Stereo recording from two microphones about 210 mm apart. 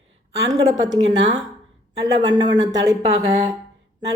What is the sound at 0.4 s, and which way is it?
Speech, 15° right (ahead or behind).